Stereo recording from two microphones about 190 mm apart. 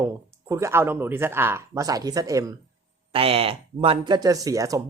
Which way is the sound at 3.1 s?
30° right (ahead or behind).